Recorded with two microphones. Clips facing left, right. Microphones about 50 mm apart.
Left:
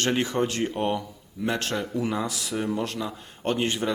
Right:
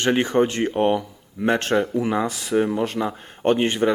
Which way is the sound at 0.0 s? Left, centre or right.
Right.